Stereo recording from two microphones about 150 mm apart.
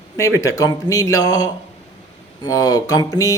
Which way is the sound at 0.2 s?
20° left (ahead or behind).